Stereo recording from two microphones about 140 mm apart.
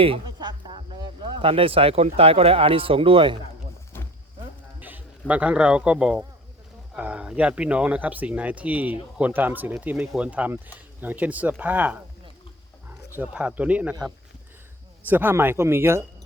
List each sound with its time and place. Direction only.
0.0 s a sound: 35° right (ahead or behind)
1.4 s speech: 40° right (ahead or behind)
3.9 s wild animals: 15° left (ahead or behind)
4.8 s a sound: 10° right (ahead or behind)
5.3 s speech: 10° right (ahead or behind)
13.1 s speech: 10° right (ahead or behind)
15.0 s speech: 15° right (ahead or behind)